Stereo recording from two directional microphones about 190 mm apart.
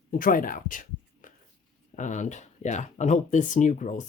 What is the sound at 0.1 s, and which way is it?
Speech, 45° left (ahead or behind).